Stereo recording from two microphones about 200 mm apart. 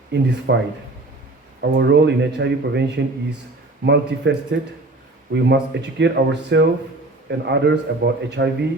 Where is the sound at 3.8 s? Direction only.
60° right (ahead or behind).